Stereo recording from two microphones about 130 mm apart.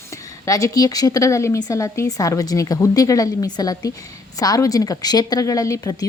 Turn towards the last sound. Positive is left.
turn(degrees=25)  # may be behind; listen again after turning